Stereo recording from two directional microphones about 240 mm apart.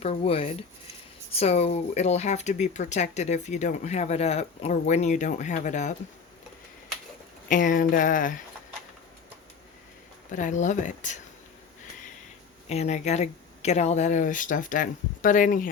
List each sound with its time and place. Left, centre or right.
0.0 s speech: left
7.4 s speech: left
10.3 s speech: left
12.6 s speech: left